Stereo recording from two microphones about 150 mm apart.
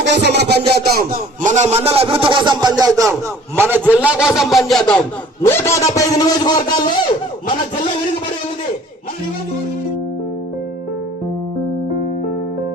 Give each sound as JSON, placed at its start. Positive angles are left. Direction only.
{"t": 0.3, "sound": "a man's voice", "side_deg": -90}
{"t": 5.4, "sound": "a man's voice", "side_deg": 20}